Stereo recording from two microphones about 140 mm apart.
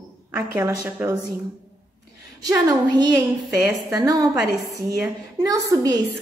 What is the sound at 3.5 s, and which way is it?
Speech, 10° right (ahead or behind).